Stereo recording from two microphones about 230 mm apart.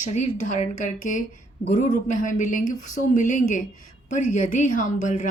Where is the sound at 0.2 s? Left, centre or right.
Left.